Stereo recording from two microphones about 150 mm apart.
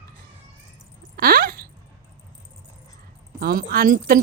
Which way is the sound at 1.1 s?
80° right.